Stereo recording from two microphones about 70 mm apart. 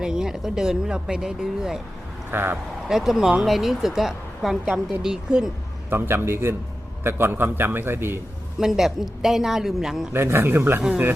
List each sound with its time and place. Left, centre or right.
0.0 s speech: centre
2.3 s a man's voice: right
2.8 s a woman's voice: centre
5.9 s a man's voice: right
8.5 s a woman's voice: centre
10.1 s a man's voice: right